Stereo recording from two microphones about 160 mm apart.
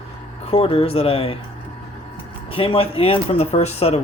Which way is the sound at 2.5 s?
35° left (ahead or behind).